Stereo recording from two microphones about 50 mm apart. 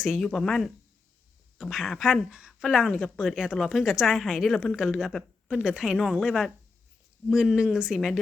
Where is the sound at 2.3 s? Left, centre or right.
Centre.